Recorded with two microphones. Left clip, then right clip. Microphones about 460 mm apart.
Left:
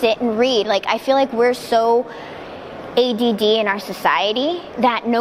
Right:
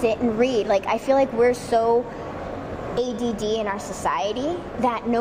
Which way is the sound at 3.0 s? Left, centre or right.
Left.